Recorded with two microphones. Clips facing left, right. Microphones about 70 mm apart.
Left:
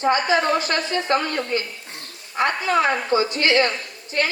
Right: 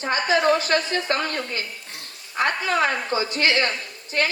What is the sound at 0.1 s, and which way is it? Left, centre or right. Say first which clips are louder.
A woman's voice: right 1 dB; left.